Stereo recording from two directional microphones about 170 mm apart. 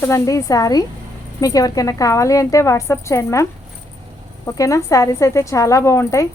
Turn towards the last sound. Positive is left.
turn(degrees=15)  # may be behind; listen again after turning